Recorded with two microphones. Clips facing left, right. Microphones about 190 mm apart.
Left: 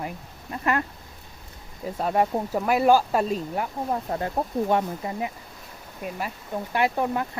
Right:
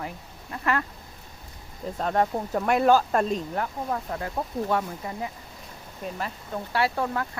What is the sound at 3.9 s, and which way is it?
Speech, 30° left (ahead or behind).